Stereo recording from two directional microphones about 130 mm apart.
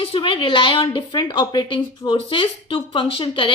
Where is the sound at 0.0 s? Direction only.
45° left (ahead or behind).